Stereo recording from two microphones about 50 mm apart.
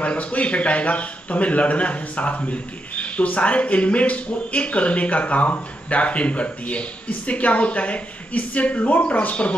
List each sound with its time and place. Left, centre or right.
0.0 s a man's voice: left